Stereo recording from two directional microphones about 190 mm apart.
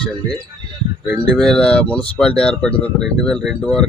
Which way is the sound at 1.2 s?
5° left (ahead or behind).